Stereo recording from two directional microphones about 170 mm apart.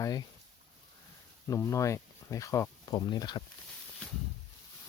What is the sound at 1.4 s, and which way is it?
Speech, 20° left (ahead or behind).